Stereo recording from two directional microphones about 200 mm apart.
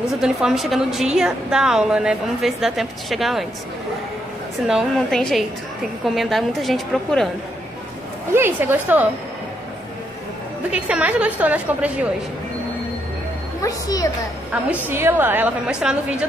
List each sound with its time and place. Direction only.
0.1 s a woman's voice: centre (ahead or behind)
4.6 s a woman's voice: centre (ahead or behind)
8.3 s a woman's voice: 10° right (ahead or behind)
10.7 s a woman's voice: 5° right (ahead or behind)
13.6 s a woman's voice: 15° left (ahead or behind)
14.5 s a woman's voice: 10° right (ahead or behind)